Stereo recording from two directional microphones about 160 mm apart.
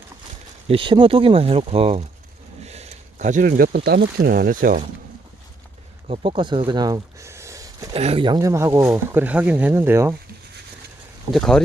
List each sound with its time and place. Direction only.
0.7 s speech: 30° right (ahead or behind)
2.6 s a sound: 40° right (ahead or behind); by 3.8 s 60° right (ahead or behind)
3.8 s speech: 80° right; by 4.8 s 60° right (ahead or behind)
6.1 s speech: 30° right (ahead or behind)
7.9 s speech: 35° right (ahead or behind); by 10.2 s 15° right (ahead or behind)
11.3 s speech: 5° left (ahead or behind)